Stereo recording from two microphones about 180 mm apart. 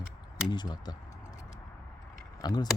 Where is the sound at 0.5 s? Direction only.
25° left (ahead or behind).